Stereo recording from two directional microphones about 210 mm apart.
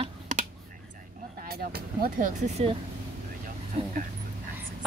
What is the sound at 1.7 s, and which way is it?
Speech, 40° right (ahead or behind).